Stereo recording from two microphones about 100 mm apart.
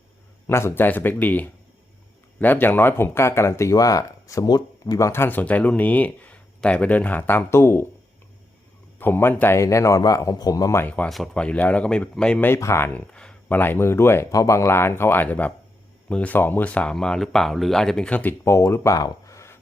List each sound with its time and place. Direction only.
0.4 s speech: 25° left (ahead or behind)
9.0 s speech: 20° left (ahead or behind)
10.8 s speech: 15° left (ahead or behind)
12.5 s speech: 30° left (ahead or behind)
13.1 s a sound: 10° left (ahead or behind)
13.6 s speech: 25° left (ahead or behind)
18.4 s speech: 30° left (ahead or behind)